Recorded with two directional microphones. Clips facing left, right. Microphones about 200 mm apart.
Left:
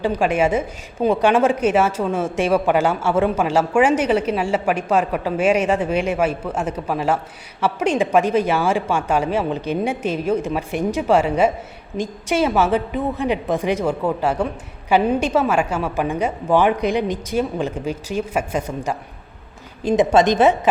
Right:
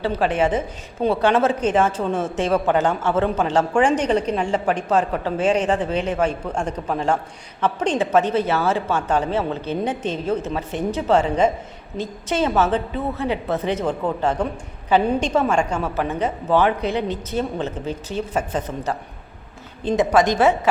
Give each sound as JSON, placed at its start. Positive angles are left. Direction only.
{"t": 0.0, "sound": "a woman's voice", "side_deg": 15}
{"t": 20.1, "sound": "a woman's voice", "side_deg": 20}